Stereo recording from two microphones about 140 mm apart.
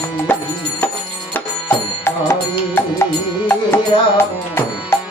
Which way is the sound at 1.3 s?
20° left (ahead or behind).